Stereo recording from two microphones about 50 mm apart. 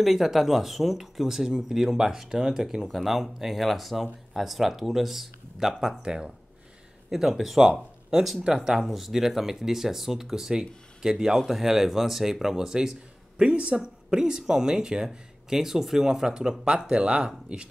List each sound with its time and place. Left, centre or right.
0.0 s speech: centre
7.1 s speech: centre
13.4 s speech: right